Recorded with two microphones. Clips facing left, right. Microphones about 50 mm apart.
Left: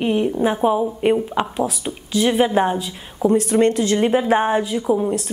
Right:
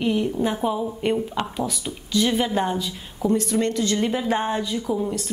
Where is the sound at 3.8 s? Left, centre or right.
Left.